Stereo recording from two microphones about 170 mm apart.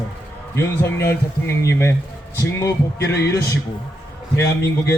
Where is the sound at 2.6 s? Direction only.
15° left (ahead or behind).